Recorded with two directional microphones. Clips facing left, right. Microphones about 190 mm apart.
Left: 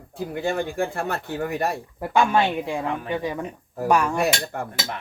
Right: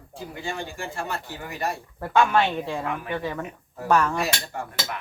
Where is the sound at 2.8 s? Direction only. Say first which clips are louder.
Left 3 dB; 30° left (ahead or behind).